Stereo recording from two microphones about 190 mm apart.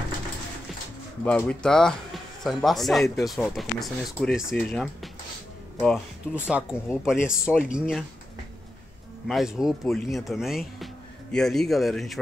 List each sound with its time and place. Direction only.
1.2 s speech: 5° left (ahead or behind)
6.4 s speech: 5° right (ahead or behind)
9.3 s speech: centre (ahead or behind)